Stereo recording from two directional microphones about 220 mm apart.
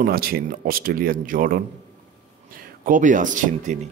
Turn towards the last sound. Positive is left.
turn(degrees=-35)  # may be behind; listen again after turning